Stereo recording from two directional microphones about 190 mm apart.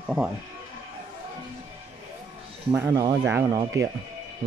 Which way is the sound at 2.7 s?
15° right (ahead or behind).